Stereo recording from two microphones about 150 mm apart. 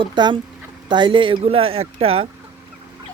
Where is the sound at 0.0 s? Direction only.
30° right (ahead or behind).